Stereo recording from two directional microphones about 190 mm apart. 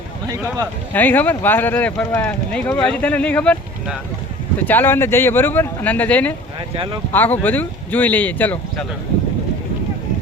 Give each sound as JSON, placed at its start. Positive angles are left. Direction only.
{"t": 0.9, "sound": "speech", "side_deg": 10}
{"t": 4.6, "sound": "speech", "side_deg": 10}
{"t": 6.7, "sound": "speech", "side_deg": -30}
{"t": 7.1, "sound": "speech", "side_deg": 10}